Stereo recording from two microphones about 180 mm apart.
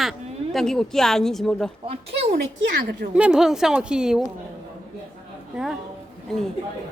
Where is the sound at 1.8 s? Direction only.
35° right (ahead or behind).